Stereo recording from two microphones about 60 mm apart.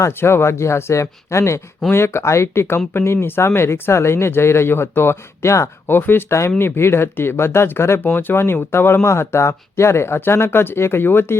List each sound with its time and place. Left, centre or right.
0.2 s speech: left
5.9 s speech: left